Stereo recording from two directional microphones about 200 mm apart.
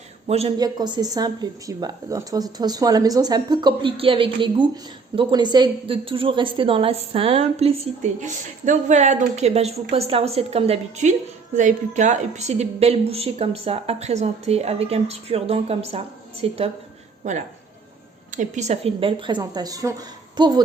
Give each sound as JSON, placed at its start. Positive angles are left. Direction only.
{"t": 0.3, "sound": "a woman's voice", "side_deg": -30}
{"t": 0.6, "sound": "a woman's voice", "side_deg": -20}